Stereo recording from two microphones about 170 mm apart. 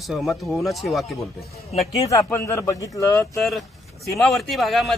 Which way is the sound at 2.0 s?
15° left (ahead or behind).